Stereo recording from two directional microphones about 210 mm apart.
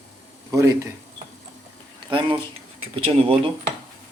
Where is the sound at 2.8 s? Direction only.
25° right (ahead or behind).